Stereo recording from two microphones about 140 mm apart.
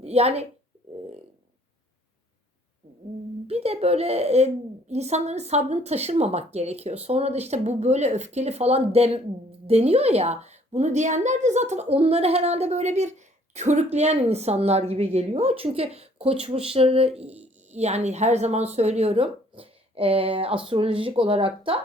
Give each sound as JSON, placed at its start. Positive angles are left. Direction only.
{"t": 0.0, "sound": "speech", "side_deg": -45}
{"t": 3.4, "sound": "a woman's voice", "side_deg": -45}